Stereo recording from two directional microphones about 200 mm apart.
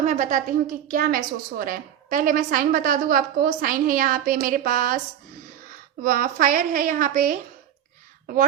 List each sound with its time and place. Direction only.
0.0 s a woman's voice: 35° right (ahead or behind)
6.0 s a woman's voice: 45° right (ahead or behind)